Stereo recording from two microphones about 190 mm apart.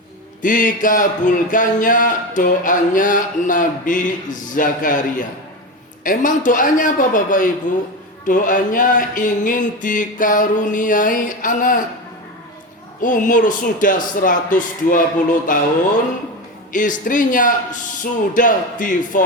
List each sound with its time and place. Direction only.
0.4 s speech: 45° left (ahead or behind)
6.0 s speech: 45° left (ahead or behind)
13.0 s speech: 45° left (ahead or behind)
16.7 s speech: 45° left (ahead or behind)